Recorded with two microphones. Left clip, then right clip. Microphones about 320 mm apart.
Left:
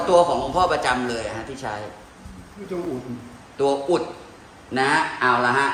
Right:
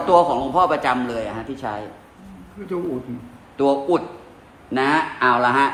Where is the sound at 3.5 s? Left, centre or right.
Right.